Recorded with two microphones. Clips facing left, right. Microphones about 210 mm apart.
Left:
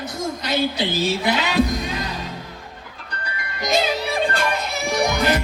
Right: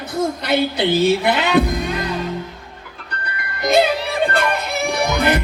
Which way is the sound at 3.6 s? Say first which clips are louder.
Right 6 dB; 60° right (ahead or behind).